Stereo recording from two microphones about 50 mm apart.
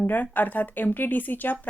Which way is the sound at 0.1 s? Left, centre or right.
Left.